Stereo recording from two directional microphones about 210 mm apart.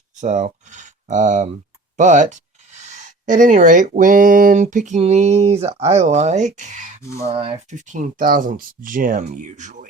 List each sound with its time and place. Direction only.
0.2 s speech: 35° right (ahead or behind)